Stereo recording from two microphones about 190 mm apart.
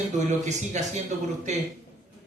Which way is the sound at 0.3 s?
40° right (ahead or behind).